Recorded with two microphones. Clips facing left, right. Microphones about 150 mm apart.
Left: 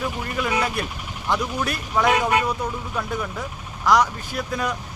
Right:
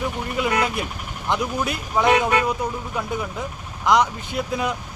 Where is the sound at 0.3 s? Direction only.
20° right (ahead or behind).